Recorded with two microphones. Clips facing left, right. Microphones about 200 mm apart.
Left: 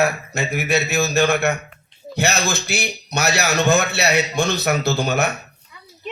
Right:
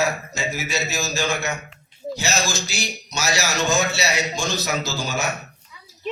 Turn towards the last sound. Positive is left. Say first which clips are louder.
# even
turn(degrees=60)  # may be behind; listen again after turning